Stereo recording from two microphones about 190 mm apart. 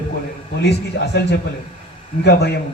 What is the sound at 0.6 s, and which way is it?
Speech, 60° left (ahead or behind).